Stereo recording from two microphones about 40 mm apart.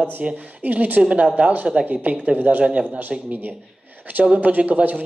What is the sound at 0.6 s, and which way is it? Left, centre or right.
Speech, right.